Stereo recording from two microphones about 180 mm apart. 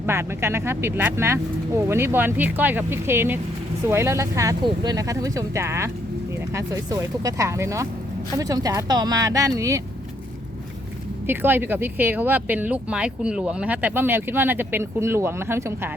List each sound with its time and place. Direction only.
0.0 s speech: 15° right (ahead or behind)
11.3 s speech: 10° right (ahead or behind)